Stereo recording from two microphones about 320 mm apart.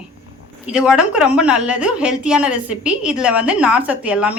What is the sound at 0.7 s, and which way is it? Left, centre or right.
A woman's voice, centre.